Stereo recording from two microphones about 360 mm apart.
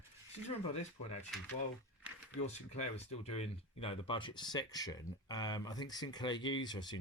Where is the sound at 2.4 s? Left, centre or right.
Centre.